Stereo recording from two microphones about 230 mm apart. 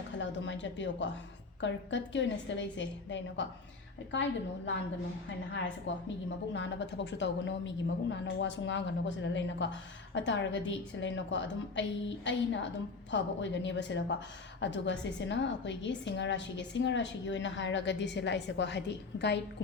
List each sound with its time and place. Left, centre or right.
0.2 s a woman's voice: left
5.9 s a woman's voice: left